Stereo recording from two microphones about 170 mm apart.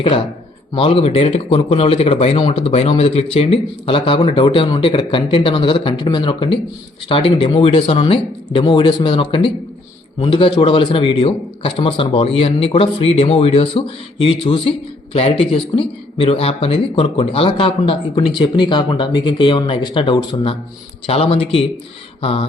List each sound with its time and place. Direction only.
0.7 s a man's voice: 35° left (ahead or behind)